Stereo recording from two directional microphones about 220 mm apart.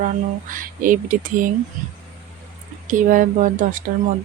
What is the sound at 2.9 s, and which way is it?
Speech, 35° right (ahead or behind).